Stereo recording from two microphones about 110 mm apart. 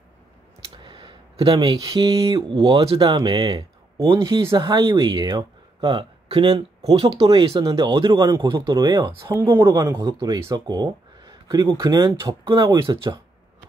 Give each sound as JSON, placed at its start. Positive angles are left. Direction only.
{"t": 0.8, "sound": "a sound", "side_deg": -50}
{"t": 1.9, "sound": "speech", "side_deg": -35}
{"t": 2.9, "sound": "speech", "side_deg": -50}
{"t": 4.4, "sound": "speech", "side_deg": -30}
{"t": 9.2, "sound": "speech", "side_deg": -25}
{"t": 9.6, "sound": "speech", "side_deg": -35}